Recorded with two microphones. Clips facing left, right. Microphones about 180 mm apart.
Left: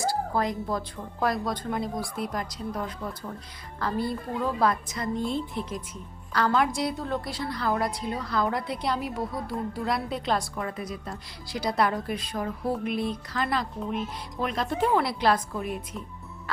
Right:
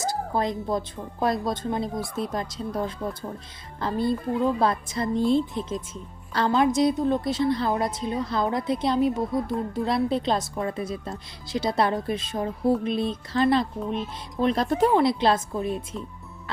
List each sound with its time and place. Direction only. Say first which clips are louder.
0.0 s a woman's voice: right 1 dB; 20° right (ahead or behind)
14.4 s speech: right 6 dB; 35° right (ahead or behind)
14.9 s a woman's voice: right 3 dB; 25° right (ahead or behind)